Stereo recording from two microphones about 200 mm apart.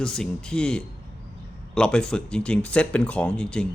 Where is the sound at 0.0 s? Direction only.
5° left (ahead or behind).